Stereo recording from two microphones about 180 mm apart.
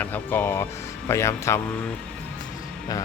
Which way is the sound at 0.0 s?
10° left (ahead or behind).